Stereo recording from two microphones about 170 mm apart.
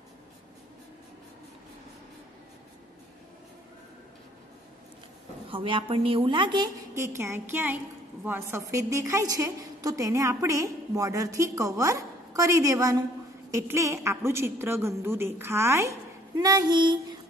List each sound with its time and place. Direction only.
5.5 s a woman's voice: 30° right (ahead or behind)
7.0 s a woman's voice: 15° right (ahead or behind)